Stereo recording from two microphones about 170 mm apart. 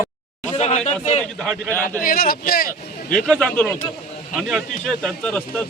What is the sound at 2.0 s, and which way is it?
Speech, 60° left (ahead or behind).